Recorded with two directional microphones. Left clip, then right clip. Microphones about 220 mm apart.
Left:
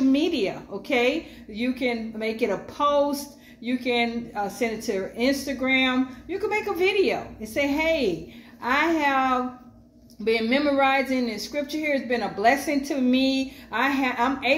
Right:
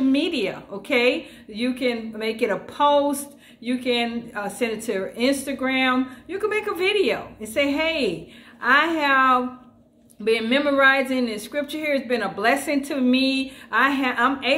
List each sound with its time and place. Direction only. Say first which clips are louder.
0.1 s speech: right 1 dB; 5° right (ahead or behind)